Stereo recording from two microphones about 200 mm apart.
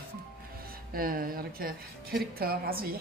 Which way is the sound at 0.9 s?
45° right (ahead or behind).